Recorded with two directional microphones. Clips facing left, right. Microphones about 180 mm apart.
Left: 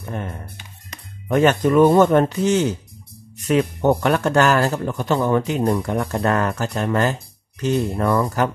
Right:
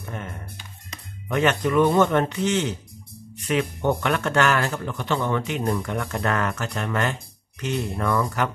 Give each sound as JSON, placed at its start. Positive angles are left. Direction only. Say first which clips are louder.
{"t": 1.3, "sound": "speech", "louder": "left 5 dB", "side_deg": 40}